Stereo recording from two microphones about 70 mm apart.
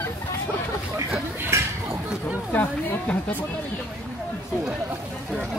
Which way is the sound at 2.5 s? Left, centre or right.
Left.